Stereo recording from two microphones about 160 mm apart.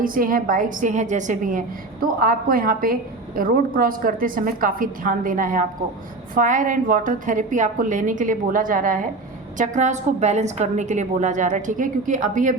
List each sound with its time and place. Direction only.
0.0 s a woman's voice: 60° right (ahead or behind)